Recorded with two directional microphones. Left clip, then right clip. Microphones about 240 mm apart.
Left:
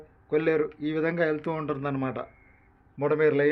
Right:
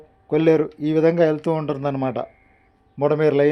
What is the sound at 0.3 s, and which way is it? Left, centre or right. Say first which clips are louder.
A man's voice: right 7 dB; right.